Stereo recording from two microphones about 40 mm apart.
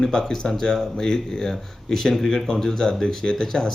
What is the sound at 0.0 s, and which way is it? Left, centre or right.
Speech, centre.